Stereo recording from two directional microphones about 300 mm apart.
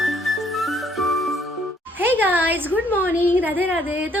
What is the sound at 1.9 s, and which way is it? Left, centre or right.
A woman's voice, centre.